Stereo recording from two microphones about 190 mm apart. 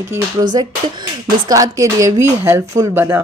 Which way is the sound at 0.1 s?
20° right (ahead or behind).